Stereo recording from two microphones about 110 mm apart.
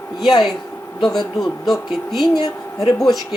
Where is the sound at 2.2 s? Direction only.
35° left (ahead or behind).